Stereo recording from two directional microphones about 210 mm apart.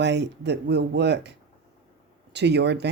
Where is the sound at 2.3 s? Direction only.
55° right (ahead or behind).